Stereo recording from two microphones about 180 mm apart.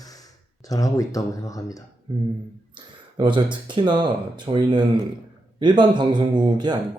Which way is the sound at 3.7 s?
25° right (ahead or behind).